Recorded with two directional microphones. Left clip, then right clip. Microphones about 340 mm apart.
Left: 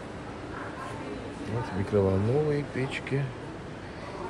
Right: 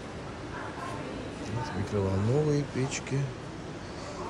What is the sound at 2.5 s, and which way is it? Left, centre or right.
Speech, centre.